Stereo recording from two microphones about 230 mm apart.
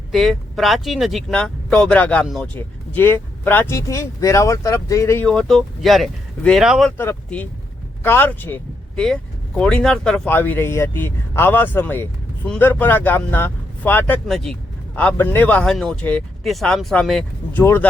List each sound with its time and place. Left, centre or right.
0.1 s speech: centre